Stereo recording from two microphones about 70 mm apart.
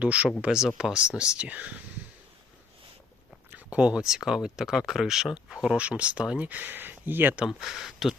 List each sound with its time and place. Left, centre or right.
0.0 s speech: centre
3.5 s speech: centre
7.6 s speech: centre